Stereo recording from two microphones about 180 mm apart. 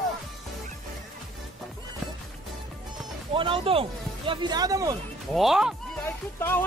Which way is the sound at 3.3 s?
30° right (ahead or behind).